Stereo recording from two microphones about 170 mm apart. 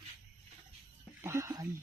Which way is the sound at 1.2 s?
15° right (ahead or behind).